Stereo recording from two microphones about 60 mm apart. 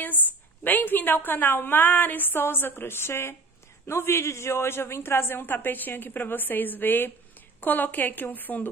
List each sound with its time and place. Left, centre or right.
0.7 s a woman's voice: left